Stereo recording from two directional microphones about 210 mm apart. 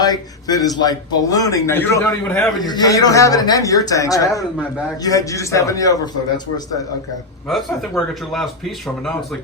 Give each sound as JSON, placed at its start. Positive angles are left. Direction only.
{"t": 0.0, "sound": "a man's voice", "side_deg": 20}
{"t": 2.6, "sound": "a man's voice", "side_deg": 20}
{"t": 7.4, "sound": "a man's voice", "side_deg": 0}